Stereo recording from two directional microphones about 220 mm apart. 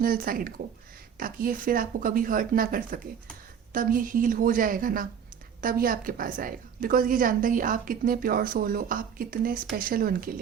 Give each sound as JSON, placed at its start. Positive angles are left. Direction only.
{"t": 0.0, "sound": "a woman's voice", "side_deg": -40}